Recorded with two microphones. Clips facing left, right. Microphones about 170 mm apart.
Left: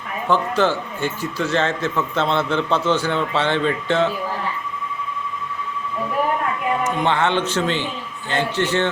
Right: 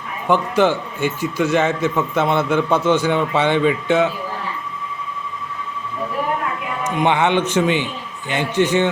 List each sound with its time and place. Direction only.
0.3 s a man's voice: 15° right (ahead or behind)
7.0 s a man's voice: 15° right (ahead or behind)